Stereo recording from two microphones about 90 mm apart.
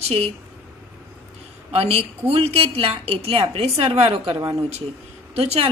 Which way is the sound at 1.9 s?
90° right.